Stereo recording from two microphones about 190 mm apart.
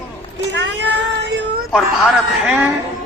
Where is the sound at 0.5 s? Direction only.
65° right (ahead or behind).